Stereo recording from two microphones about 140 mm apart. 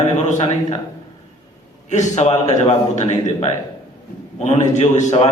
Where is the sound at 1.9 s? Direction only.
55° left (ahead or behind).